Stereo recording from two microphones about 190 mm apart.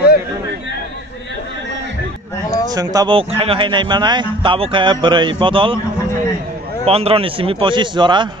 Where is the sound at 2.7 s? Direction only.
20° right (ahead or behind).